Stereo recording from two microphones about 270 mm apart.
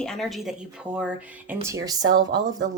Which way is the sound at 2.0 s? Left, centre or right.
Right.